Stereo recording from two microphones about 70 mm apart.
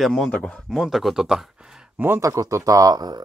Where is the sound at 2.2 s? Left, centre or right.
Right.